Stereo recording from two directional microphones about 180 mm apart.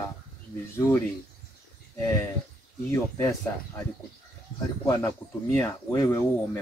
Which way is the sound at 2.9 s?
15° left (ahead or behind).